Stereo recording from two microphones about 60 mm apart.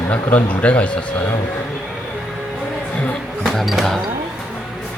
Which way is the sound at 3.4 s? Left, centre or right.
Centre.